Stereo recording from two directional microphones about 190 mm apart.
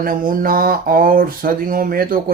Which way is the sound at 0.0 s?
50° right (ahead or behind).